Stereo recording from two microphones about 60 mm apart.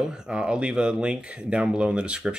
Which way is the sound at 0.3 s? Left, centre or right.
Centre.